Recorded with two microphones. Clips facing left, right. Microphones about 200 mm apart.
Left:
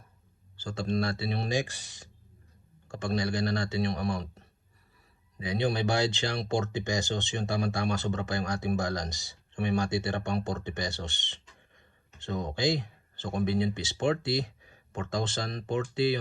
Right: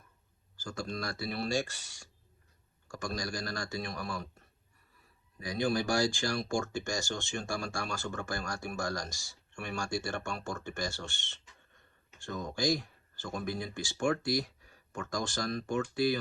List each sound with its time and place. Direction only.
0.5 s speech: 25° left (ahead or behind)